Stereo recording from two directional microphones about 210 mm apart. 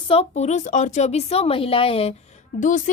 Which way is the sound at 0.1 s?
30° left (ahead or behind).